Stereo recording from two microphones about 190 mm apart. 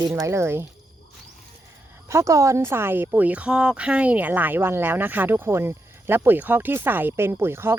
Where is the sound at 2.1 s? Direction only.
15° right (ahead or behind).